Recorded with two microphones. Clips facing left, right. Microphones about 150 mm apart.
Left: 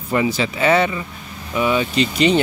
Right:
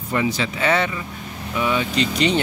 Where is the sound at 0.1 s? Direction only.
5° left (ahead or behind).